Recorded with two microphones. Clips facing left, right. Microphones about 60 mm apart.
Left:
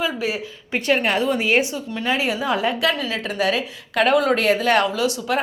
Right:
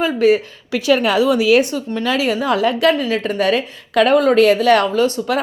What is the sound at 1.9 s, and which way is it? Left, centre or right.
A woman's voice, right.